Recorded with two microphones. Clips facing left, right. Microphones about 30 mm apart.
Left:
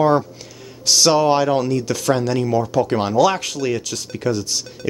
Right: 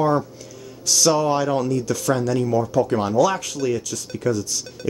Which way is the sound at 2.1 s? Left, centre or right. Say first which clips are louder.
Left 2 dB; left.